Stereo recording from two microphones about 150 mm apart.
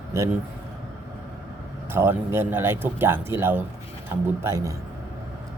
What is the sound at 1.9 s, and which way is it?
A man's voice, 15° right (ahead or behind).